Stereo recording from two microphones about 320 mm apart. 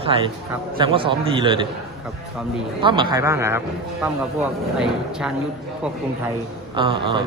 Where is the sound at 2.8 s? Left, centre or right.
Centre.